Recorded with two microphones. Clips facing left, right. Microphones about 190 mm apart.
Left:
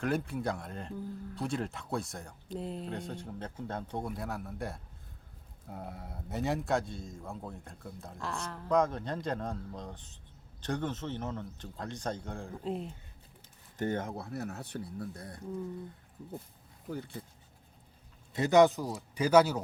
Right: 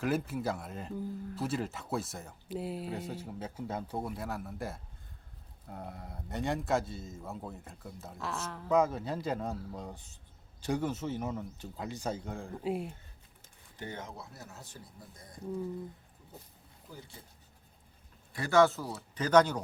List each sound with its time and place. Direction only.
0.0 s speech: 5° right (ahead or behind)
13.7 s speech: 50° left (ahead or behind); by 15.4 s 65° left (ahead or behind)
18.3 s a man's voice: 20° left (ahead or behind)